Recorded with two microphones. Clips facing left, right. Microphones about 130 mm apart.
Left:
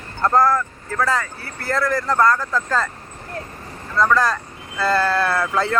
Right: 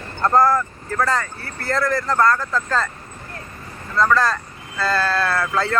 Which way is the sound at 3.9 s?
10° left (ahead or behind).